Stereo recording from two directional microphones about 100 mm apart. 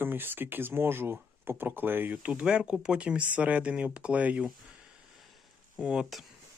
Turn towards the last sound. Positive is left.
turn(degrees=-5)  # may be behind; listen again after turning